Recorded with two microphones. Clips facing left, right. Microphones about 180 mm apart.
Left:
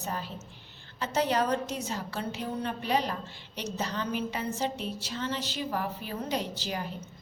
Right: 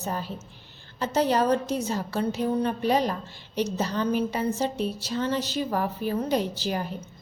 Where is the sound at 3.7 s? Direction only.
40° right (ahead or behind).